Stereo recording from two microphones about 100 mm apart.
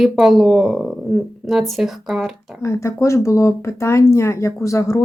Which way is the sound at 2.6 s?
30° left (ahead or behind).